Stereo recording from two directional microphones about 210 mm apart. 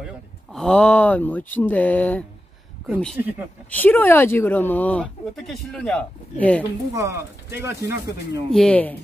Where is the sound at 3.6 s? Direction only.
10° left (ahead or behind).